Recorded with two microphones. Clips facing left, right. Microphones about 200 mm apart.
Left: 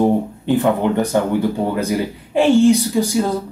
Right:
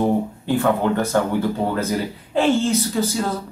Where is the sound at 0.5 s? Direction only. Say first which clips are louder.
Left 3 dB; 20° left (ahead or behind).